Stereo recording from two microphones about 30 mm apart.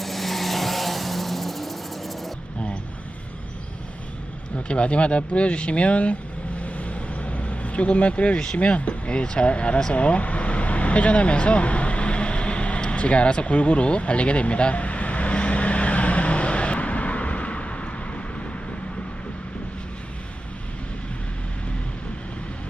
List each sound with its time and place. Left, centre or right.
0.0 s vehicle: centre
4.5 s speech: left
6.6 s vehicle: left
8.5 s speech: left
9.9 s vehicle: left